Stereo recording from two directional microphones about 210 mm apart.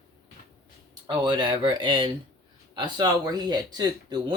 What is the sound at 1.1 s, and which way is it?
Speech, 20° right (ahead or behind).